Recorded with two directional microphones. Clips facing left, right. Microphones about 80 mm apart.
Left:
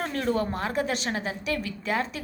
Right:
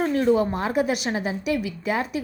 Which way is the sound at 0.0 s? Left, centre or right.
Centre.